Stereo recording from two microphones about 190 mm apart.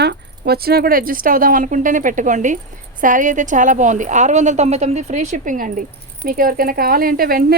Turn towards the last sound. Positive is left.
turn(degrees=-50)  # may be behind; listen again after turning